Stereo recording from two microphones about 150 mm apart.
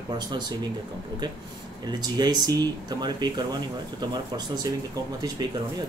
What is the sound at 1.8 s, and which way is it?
Speech, 25° right (ahead or behind).